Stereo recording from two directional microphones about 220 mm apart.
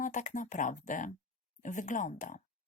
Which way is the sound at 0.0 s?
35° left (ahead or behind).